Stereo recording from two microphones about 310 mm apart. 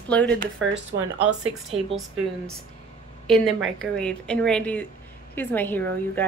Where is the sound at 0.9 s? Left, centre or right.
Right.